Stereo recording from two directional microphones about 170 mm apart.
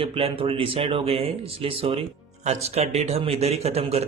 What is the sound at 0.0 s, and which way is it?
A man's voice, 35° right (ahead or behind).